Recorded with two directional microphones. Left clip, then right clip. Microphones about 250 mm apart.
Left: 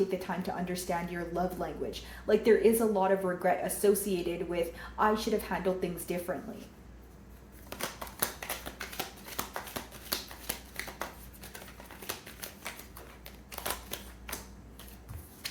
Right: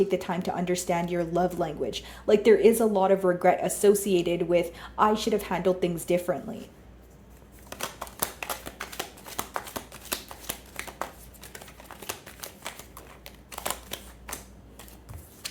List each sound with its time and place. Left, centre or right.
0.1 s speech: right
7.7 s a sound: right
13.2 s typewriter: right